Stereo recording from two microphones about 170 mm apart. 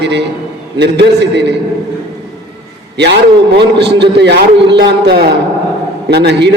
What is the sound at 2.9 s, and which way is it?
A man's voice, 85° right.